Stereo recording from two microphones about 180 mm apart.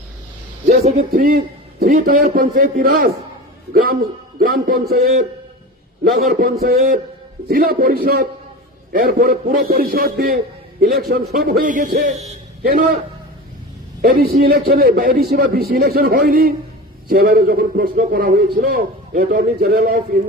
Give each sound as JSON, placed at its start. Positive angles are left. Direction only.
{"t": 0.7, "sound": "speech", "side_deg": -35}
{"t": 1.1, "sound": "a man's voice", "side_deg": -55}
{"t": 6.1, "sound": "a man's voice", "side_deg": -55}
{"t": 12.6, "sound": "a man's voice", "side_deg": -55}
{"t": 14.0, "sound": "a man's voice", "side_deg": -55}